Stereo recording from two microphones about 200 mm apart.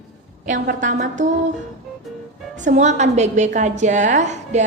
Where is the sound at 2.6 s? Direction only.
35° right (ahead or behind).